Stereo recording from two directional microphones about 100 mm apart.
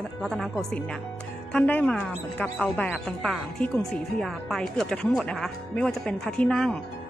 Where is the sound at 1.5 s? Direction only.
15° left (ahead or behind).